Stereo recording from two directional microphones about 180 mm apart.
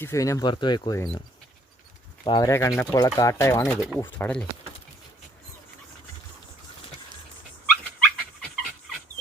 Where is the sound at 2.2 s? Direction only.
25° left (ahead or behind).